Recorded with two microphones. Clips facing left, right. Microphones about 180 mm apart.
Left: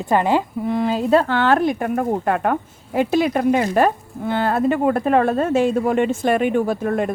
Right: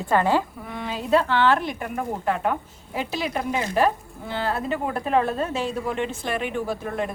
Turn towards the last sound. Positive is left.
turn(degrees=50)  # may be behind; listen again after turning